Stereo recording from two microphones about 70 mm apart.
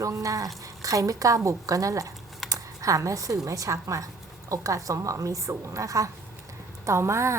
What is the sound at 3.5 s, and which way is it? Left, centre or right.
A woman's voice, right.